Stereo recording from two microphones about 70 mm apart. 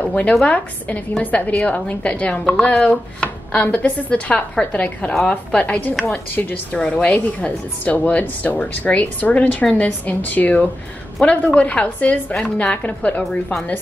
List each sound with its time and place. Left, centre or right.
0.0 s a woman's voice: centre
6.8 s a woman's voice: centre